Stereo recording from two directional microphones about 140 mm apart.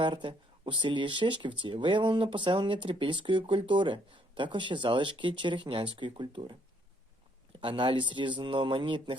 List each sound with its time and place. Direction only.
0.0 s speech: 35° right (ahead or behind)
7.6 s speech: 35° right (ahead or behind)